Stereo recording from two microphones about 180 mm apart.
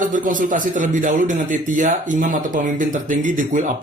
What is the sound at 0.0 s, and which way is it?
Speech, 45° right (ahead or behind).